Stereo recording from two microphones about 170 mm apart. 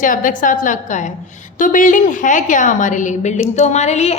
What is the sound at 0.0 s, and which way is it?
A woman's voice, 50° left (ahead or behind).